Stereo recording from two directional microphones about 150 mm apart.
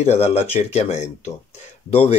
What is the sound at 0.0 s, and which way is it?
Rub, 45° left (ahead or behind).